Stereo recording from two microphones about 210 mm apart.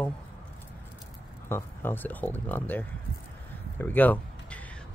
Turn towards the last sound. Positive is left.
turn(degrees=10)  # may be behind; listen again after turning